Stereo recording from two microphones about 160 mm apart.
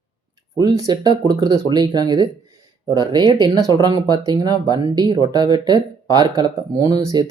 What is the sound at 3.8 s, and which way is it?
Speech, 25° right (ahead or behind).